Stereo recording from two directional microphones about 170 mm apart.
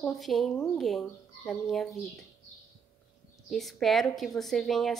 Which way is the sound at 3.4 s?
Centre (ahead or behind).